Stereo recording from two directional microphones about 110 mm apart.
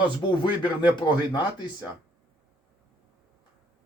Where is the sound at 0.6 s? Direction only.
45° left (ahead or behind).